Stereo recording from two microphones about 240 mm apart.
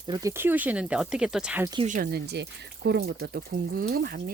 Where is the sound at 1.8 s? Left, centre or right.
Right.